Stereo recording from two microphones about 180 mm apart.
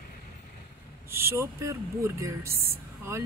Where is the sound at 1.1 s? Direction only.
15° right (ahead or behind).